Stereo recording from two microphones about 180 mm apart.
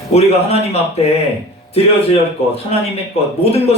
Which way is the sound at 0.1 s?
35° left (ahead or behind).